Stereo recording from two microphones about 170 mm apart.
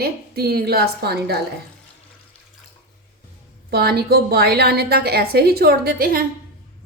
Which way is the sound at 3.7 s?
65° right (ahead or behind).